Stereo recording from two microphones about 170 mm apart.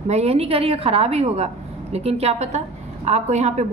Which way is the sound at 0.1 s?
35° right (ahead or behind).